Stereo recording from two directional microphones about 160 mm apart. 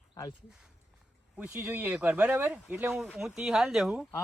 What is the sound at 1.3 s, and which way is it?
Speech, 5° right (ahead or behind).